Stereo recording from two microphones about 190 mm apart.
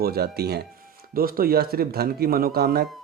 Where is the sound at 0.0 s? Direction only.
55° right (ahead or behind).